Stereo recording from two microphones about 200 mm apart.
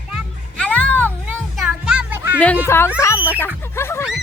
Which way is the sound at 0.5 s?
5° left (ahead or behind).